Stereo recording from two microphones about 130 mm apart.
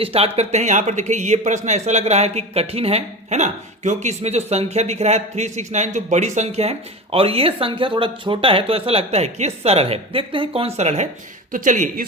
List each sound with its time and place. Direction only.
0.0 s speech: 50° right (ahead or behind)
11.5 s a man's voice: 85° right